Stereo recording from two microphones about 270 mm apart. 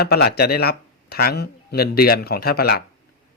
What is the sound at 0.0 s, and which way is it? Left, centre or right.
Speech, left.